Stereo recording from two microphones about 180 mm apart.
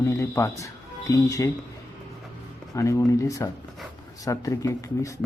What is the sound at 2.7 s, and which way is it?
Speech, 15° left (ahead or behind).